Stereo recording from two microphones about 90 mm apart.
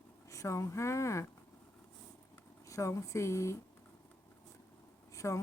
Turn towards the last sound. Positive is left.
turn(degrees=35)  # may be behind; listen again after turning